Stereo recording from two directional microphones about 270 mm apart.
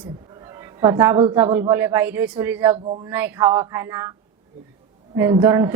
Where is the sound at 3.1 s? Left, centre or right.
Centre.